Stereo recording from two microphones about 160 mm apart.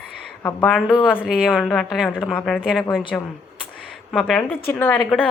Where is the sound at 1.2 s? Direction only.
5° right (ahead or behind).